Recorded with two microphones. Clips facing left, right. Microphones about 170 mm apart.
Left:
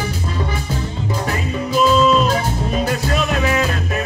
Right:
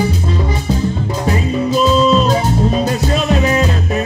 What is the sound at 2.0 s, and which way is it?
Music, 30° right (ahead or behind).